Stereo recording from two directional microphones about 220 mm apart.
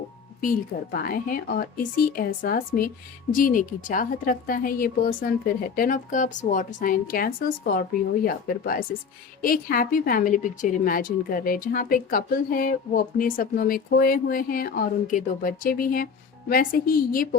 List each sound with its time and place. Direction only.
0.4 s a woman's voice: 40° left (ahead or behind)